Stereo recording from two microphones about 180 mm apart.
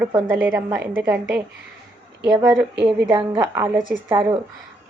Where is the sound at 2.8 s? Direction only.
5° right (ahead or behind).